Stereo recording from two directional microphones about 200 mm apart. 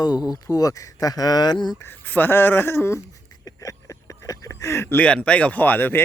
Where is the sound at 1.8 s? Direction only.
10° left (ahead or behind).